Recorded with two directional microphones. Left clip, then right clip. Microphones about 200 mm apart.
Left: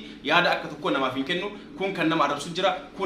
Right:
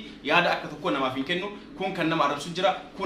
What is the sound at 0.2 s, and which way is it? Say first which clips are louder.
Speech: left 1 dB; 15° left (ahead or behind).